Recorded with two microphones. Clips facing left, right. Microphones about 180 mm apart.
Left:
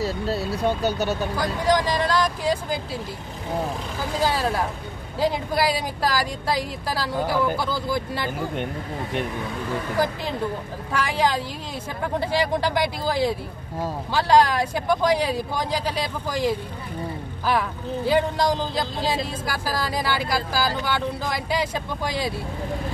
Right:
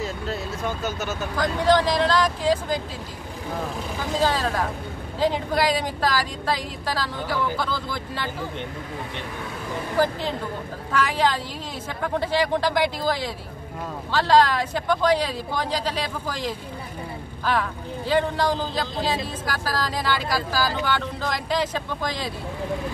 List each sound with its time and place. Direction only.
0.0 s speech: 35° left (ahead or behind)
1.3 s speech: 10° left (ahead or behind)
4.2 s speech: 10° left (ahead or behind)
10.9 s speech: 10° left (ahead or behind)